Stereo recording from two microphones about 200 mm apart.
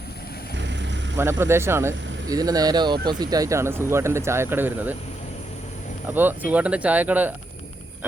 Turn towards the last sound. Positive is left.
turn(degrees=-10)  # may be behind; listen again after turning